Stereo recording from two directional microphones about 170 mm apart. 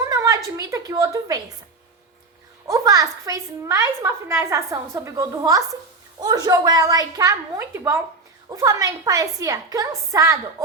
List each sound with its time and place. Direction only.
0.0 s a woman's voice: 20° right (ahead or behind)
2.6 s a woman's voice: 20° right (ahead or behind)